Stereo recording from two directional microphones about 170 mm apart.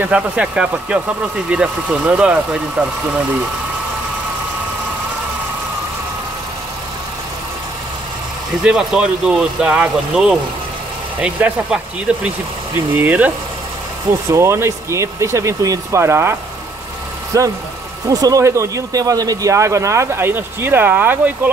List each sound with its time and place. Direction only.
0.0 s a man's voice: 5° right (ahead or behind)
8.6 s a man's voice: 5° right (ahead or behind)
14.3 s a man's voice: 15° right (ahead or behind)